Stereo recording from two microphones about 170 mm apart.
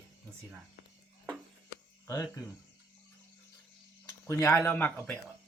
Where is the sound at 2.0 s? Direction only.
20° left (ahead or behind).